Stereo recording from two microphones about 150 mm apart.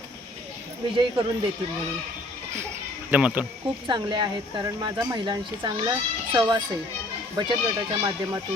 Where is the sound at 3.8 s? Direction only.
30° right (ahead or behind).